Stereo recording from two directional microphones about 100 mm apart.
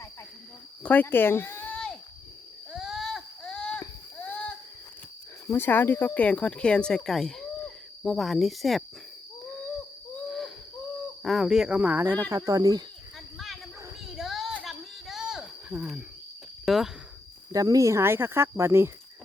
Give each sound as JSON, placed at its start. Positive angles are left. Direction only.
{"t": 0.8, "sound": "speech", "side_deg": 15}
{"t": 1.7, "sound": "a sound", "side_deg": 10}
{"t": 2.7, "sound": "a sound", "side_deg": 0}
{"t": 5.5, "sound": "speech", "side_deg": 20}
{"t": 10.2, "sound": "wheeze", "side_deg": 5}
{"t": 11.2, "sound": "speech", "side_deg": 0}
{"t": 12.5, "sound": "speech", "side_deg": -35}
{"t": 14.1, "sound": "children playing", "side_deg": 0}
{"t": 14.6, "sound": "a sound", "side_deg": 0}
{"t": 16.6, "sound": "speech", "side_deg": -5}
{"t": 17.5, "sound": "speech", "side_deg": -35}